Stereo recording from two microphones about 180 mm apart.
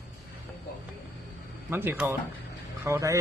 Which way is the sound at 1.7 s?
10° right (ahead or behind).